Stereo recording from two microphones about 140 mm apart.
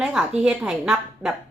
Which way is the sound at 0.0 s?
5° right (ahead or behind).